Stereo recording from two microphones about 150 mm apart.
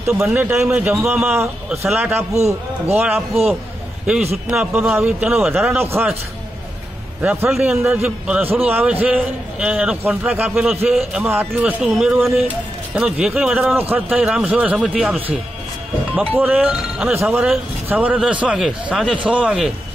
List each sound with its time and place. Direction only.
0.2 s a man's voice: 10° right (ahead or behind)
2.3 s a man's voice: 45° right (ahead or behind)
4.5 s a man's voice: 5° right (ahead or behind)
5.8 s a man's voice: 15° right (ahead or behind)
7.2 s a man's voice: 10° right (ahead or behind)
10.5 s a man's voice: centre (ahead or behind)
13.7 s a man's voice: 15° right (ahead or behind)
16.3 s a man's voice: 10° right (ahead or behind)